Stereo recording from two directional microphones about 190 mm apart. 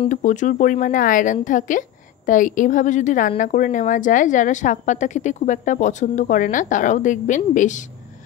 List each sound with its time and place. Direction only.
0.1 s a woman's voice: 40° left (ahead or behind)